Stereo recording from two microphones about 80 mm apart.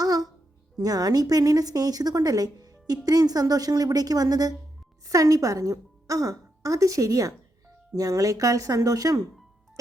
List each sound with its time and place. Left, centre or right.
0.0 s music: right
0.8 s a woman's voice: right